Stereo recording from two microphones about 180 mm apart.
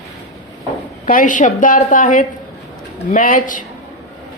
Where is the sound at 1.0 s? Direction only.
50° left (ahead or behind).